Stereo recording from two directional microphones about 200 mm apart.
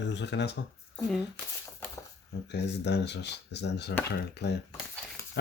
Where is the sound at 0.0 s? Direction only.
60° left (ahead or behind).